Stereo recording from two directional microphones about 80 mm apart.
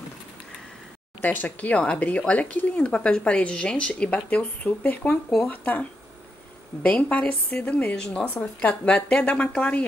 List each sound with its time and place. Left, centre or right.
1.2 s speech: left